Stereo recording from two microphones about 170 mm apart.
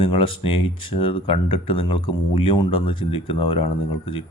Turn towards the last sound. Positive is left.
turn(degrees=30)  # may be behind; listen again after turning